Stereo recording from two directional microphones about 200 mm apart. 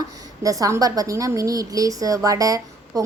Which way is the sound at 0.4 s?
15° right (ahead or behind).